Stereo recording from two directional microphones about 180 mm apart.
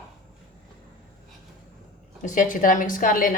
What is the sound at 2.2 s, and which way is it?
A woman's voice, 45° left (ahead or behind).